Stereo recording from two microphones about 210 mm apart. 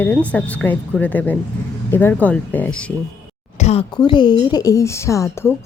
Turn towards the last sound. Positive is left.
turn(degrees=15)  # may be behind; listen again after turning